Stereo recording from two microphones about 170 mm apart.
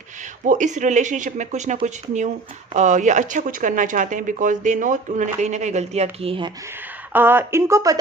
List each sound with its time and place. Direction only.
0.4 s speech: 45° right (ahead or behind)
7.1 s speech: 10° right (ahead or behind)